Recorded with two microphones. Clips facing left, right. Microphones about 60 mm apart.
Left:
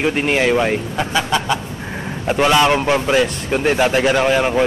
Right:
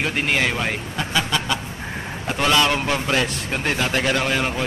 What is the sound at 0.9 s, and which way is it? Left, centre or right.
A man's voice, centre.